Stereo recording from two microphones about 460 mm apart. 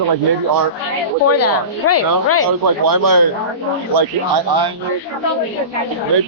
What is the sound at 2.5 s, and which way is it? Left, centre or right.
A man's voice, right.